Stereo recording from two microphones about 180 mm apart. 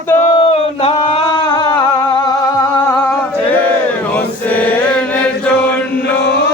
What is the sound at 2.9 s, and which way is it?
Chant, 10° left (ahead or behind).